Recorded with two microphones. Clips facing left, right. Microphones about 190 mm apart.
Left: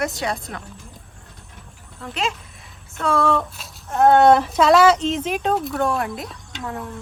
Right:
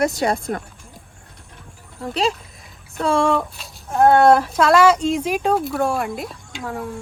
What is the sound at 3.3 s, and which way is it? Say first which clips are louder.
Speech: right 1 dB; centre (ahead or behind).